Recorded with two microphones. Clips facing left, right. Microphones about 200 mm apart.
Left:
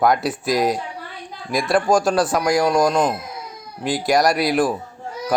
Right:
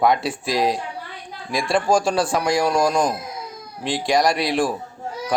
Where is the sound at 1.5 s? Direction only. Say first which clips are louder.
Left 2 dB; centre (ahead or behind).